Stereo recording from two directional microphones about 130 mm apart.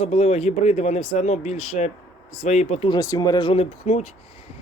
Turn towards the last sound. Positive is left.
turn(degrees=60)  # may be behind; listen again after turning